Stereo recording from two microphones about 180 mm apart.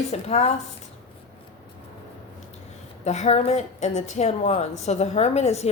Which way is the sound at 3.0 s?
40° left (ahead or behind).